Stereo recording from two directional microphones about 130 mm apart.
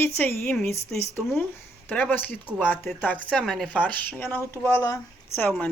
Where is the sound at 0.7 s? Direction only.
55° right (ahead or behind).